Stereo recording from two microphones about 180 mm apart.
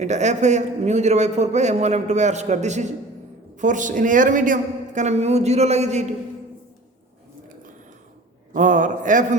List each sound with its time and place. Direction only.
0.0 s a man's voice: 40° right (ahead or behind)
8.5 s a man's voice: 45° right (ahead or behind)